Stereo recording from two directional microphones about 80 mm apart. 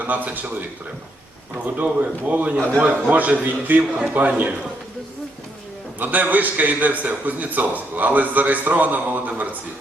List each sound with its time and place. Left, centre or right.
0.0 s a man's voice: right
6.0 s a man's voice: right